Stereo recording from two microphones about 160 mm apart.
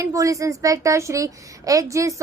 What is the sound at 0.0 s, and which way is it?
A woman's voice, 20° right (ahead or behind).